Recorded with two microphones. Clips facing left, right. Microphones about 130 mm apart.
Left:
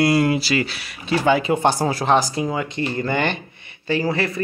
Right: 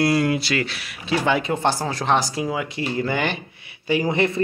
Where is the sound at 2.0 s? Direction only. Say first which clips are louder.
Left 1 dB; centre (ahead or behind).